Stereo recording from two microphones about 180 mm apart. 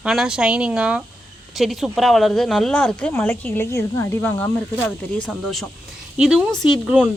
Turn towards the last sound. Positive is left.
turn(degrees=0)  # may be behind; listen again after turning